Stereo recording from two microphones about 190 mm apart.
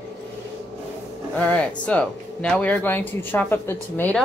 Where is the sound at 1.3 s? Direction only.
5° left (ahead or behind).